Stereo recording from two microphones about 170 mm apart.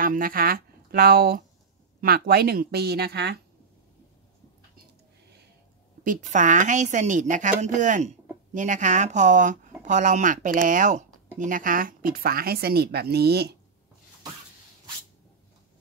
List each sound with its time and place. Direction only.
0.0 s speech: 55° right (ahead or behind); by 3.3 s 75° right (ahead or behind)
6.0 s speech: 45° right (ahead or behind); by 13.6 s 75° right (ahead or behind)